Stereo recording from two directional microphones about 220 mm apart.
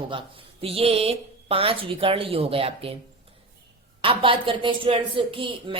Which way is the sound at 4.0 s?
25° right (ahead or behind).